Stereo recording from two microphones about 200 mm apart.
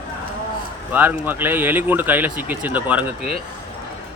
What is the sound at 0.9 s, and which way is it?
Speech, 10° right (ahead or behind).